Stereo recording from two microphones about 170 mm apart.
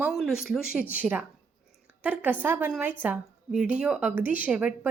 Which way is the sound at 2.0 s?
10° right (ahead or behind).